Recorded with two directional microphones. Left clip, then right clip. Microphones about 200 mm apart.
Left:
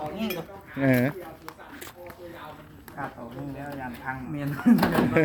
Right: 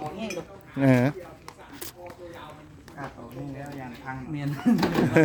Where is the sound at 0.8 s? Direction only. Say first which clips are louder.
Right 1 dB; 30° right (ahead or behind).